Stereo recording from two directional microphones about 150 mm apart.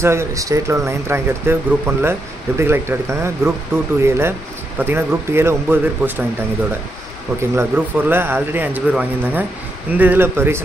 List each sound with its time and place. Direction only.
0.0 s speech: 20° right (ahead or behind)
7.5 s speech: 15° right (ahead or behind)